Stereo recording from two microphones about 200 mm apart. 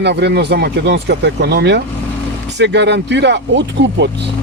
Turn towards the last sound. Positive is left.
turn(degrees=-60)  # may be behind; listen again after turning